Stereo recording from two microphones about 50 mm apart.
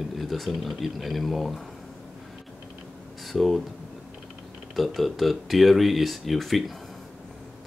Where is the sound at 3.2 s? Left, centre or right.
Centre.